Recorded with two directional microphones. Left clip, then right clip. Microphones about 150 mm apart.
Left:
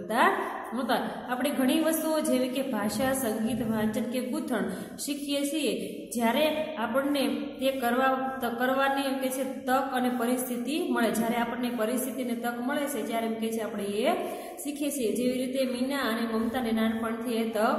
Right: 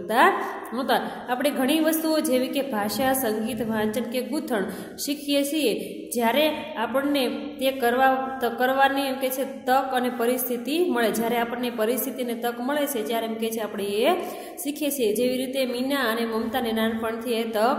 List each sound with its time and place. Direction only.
0.2 s a woman's voice: 30° right (ahead or behind)